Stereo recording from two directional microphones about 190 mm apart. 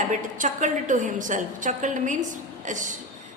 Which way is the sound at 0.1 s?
40° right (ahead or behind).